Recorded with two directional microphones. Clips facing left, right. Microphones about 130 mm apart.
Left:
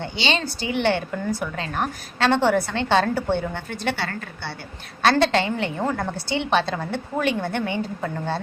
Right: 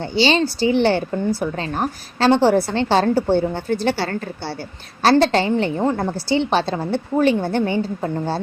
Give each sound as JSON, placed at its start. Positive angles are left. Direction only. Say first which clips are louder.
{"t": 0.0, "sound": "a woman's voice", "louder": "right 8 dB", "side_deg": -35}